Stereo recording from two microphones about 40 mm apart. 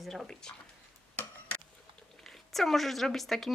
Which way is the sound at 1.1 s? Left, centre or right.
Left.